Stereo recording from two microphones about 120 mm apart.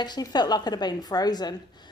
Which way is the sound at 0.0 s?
35° left (ahead or behind).